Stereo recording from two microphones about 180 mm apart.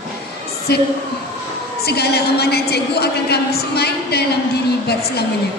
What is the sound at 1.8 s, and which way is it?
A woman's voice, 60° left (ahead or behind).